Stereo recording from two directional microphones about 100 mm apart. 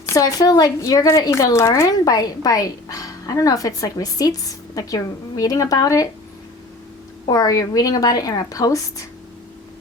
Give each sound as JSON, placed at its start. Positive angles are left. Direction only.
{"t": 0.0, "sound": "speech", "side_deg": 35}
{"t": 7.3, "sound": "speech", "side_deg": 35}